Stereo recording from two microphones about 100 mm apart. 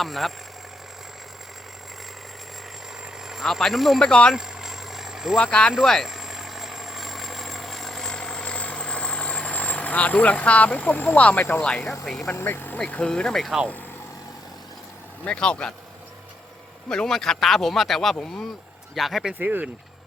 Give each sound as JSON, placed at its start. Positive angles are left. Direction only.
{"t": 0.0, "sound": "speech", "side_deg": 0}
{"t": 3.0, "sound": "speech", "side_deg": -5}
{"t": 4.4, "sound": "vehicle", "side_deg": -5}
{"t": 5.4, "sound": "speech", "side_deg": 10}
{"t": 5.8, "sound": "vehicle", "side_deg": 5}
{"t": 12.0, "sound": "speech", "side_deg": 5}
{"t": 12.3, "sound": "speech", "side_deg": 20}
{"t": 12.8, "sound": "speech", "side_deg": 10}
{"t": 15.2, "sound": "speech", "side_deg": 10}
{"t": 16.9, "sound": "speech", "side_deg": 5}
{"t": 19.3, "sound": "speech", "side_deg": -15}